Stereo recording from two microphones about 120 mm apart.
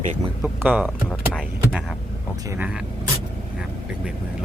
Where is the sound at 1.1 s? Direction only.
5° left (ahead or behind).